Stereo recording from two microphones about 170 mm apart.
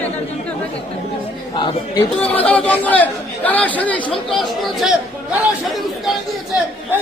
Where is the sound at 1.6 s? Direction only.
30° left (ahead or behind).